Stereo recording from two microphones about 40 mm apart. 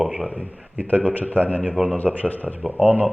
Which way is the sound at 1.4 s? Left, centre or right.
Left.